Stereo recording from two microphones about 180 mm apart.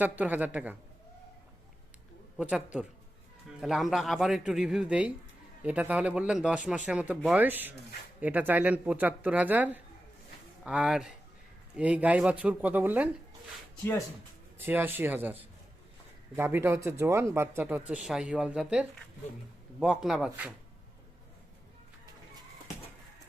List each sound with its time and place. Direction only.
0.0 s speech: 10° right (ahead or behind)
2.4 s a man's voice: 5° right (ahead or behind)
14.6 s a man's voice: 10° right (ahead or behind)